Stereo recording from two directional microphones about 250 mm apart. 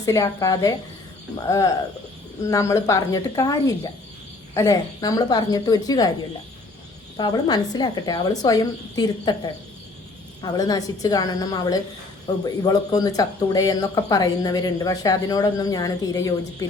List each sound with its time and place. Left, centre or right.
0.0 s speech: centre
7.2 s speech: centre
10.4 s speech: centre